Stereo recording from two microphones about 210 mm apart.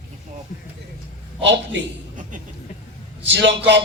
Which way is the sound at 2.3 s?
40° right (ahead or behind).